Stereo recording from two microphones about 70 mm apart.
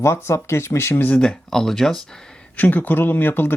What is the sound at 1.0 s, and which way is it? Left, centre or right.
Speech, left.